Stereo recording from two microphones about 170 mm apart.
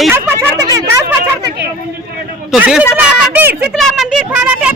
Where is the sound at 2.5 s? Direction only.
5° right (ahead or behind).